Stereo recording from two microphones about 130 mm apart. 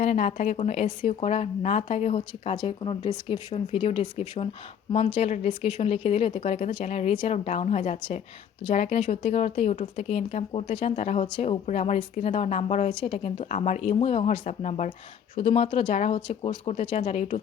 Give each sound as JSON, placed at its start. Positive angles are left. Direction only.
{"t": 0.0, "sound": "speech", "side_deg": 60}
{"t": 2.6, "sound": "speech", "side_deg": 40}
{"t": 3.5, "sound": "speech", "side_deg": 50}
{"t": 10.9, "sound": "speech", "side_deg": 60}
{"t": 15.4, "sound": "speech", "side_deg": 50}
{"t": 16.2, "sound": "speech", "side_deg": 40}